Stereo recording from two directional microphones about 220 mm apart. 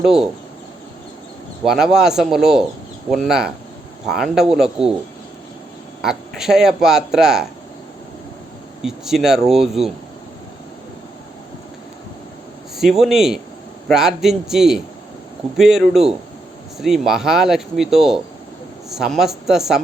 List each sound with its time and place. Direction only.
0.0 s speech: centre (ahead or behind)
1.6 s speech: centre (ahead or behind)
6.0 s speech: centre (ahead or behind)
8.8 s speech: centre (ahead or behind)
12.7 s speech: centre (ahead or behind)